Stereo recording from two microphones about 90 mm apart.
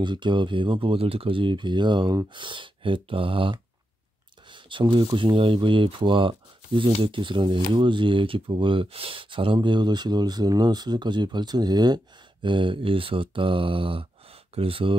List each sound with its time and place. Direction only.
0.0 s speech: 60° right (ahead or behind)
4.5 s a sound: 65° right (ahead or behind)
5.1 s speech: 75° right (ahead or behind)
14.5 s speech: 90° right